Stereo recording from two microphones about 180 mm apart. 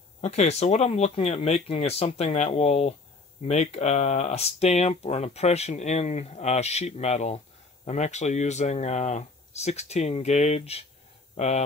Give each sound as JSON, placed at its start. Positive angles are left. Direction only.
{"t": 0.2, "sound": "speech", "side_deg": 40}